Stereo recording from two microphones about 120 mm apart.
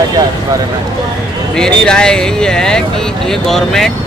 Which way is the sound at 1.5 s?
5° left (ahead or behind).